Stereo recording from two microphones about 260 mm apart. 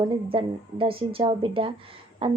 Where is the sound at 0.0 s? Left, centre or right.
Centre.